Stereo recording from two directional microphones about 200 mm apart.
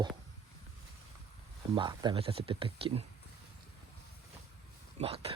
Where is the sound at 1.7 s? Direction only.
20° right (ahead or behind).